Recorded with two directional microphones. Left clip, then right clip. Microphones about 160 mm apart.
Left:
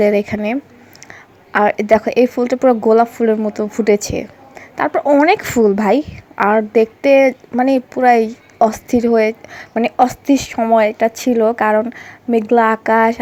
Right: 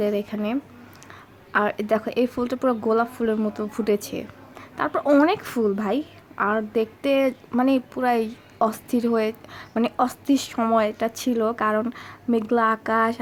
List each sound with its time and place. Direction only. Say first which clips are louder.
0.0 s a woman's voice: left 10 dB; 30° left (ahead or behind)
5.2 s a woman's voice: left 9 dB; 30° left (ahead or behind)